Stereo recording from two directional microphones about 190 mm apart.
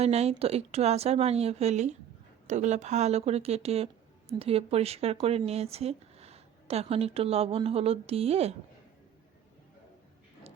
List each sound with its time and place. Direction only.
0.0 s a woman's voice: 35° right (ahead or behind)